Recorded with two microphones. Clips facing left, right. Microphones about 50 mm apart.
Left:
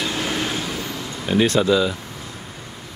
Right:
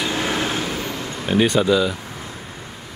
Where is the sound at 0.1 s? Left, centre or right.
Right.